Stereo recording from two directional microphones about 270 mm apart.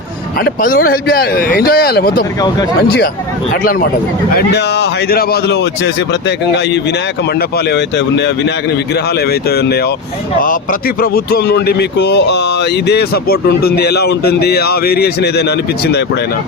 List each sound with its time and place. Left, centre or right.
0.3 s a man's voice: left
3.5 s a man's voice: left